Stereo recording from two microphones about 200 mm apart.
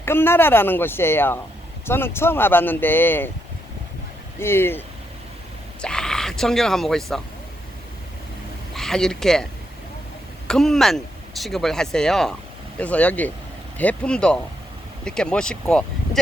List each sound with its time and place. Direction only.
0.0 s a woman's voice: 10° left (ahead or behind)
4.4 s a woman's voice: 10° left (ahead or behind)
5.8 s speech: 5° left (ahead or behind)
8.7 s a woman's voice: centre (ahead or behind)